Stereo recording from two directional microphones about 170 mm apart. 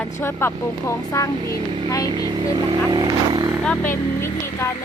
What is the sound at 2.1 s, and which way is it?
Speech, 25° right (ahead or behind).